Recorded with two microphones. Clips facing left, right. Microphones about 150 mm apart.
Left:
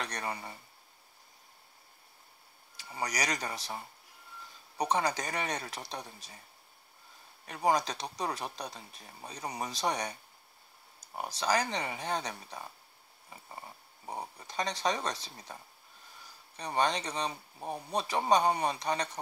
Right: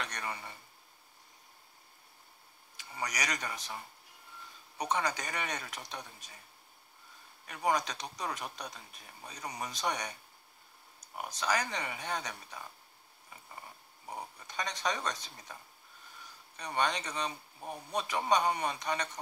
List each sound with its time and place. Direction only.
0.0 s speech: 35° left (ahead or behind)
2.8 s speech: 35° left (ahead or behind)
7.4 s speech: 35° left (ahead or behind)
11.1 s speech: 30° left (ahead or behind)
14.0 s speech: 30° left (ahead or behind)
16.5 s speech: 30° left (ahead or behind)